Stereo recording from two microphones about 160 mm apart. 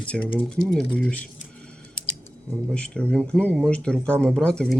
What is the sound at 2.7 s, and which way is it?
Speech, 5° left (ahead or behind).